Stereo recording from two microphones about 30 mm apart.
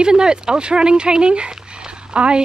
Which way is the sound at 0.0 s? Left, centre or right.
Right.